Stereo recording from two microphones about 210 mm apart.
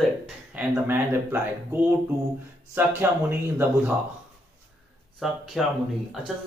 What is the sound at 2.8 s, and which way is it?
Speech, 10° right (ahead or behind).